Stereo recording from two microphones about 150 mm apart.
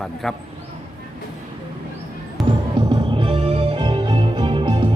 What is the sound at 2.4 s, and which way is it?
Music, 30° right (ahead or behind).